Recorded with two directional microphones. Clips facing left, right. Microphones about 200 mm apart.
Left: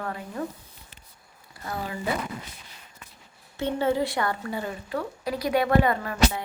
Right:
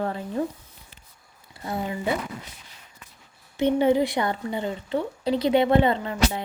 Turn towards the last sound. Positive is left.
turn(degrees=-25)  # may be behind; listen again after turning